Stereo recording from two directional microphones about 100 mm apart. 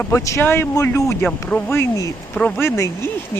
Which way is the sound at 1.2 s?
10° left (ahead or behind).